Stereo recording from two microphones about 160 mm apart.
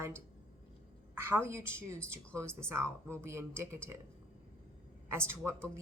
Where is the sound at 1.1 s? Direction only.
15° right (ahead or behind).